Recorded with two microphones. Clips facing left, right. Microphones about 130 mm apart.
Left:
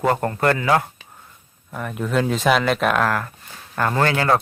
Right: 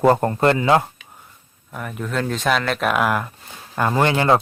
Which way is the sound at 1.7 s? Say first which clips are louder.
Left 3 dB; centre (ahead or behind).